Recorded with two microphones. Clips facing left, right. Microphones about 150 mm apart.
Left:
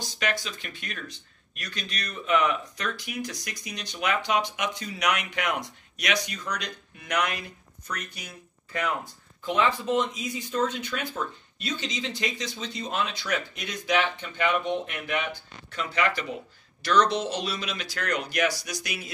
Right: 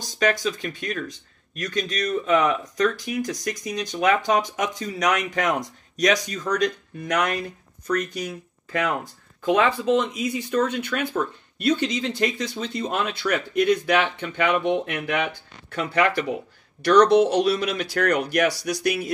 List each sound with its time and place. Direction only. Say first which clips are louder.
0.0 s speech: right 8 dB; 45° right (ahead or behind)
9.5 s speech: right 5 dB; 90° right; by 15.2 s 70° right (ahead or behind)
15.7 s speech: right 6 dB; 55° right (ahead or behind)